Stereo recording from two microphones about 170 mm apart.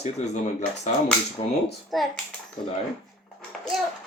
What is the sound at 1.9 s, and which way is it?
Speech, centre (ahead or behind).